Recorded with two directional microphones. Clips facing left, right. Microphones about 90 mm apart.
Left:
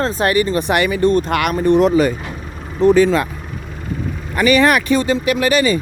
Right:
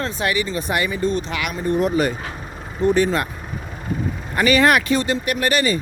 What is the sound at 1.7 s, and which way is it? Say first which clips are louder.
Speech: left 6 dB; 90° left.